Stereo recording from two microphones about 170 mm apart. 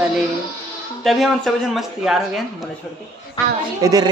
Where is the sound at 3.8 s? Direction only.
20° right (ahead or behind).